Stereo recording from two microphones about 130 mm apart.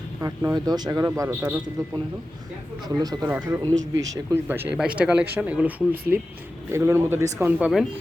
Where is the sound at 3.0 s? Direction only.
30° right (ahead or behind).